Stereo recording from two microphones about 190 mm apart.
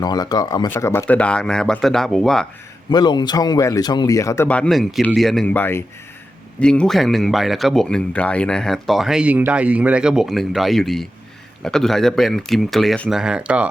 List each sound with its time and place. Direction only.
0.0 s speech: 20° left (ahead or behind); by 2.5 s 5° left (ahead or behind)
2.9 s speech: 20° left (ahead or behind); by 13.7 s 5° right (ahead or behind)